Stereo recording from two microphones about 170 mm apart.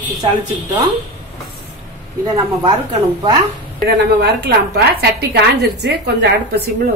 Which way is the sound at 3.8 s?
70° right (ahead or behind).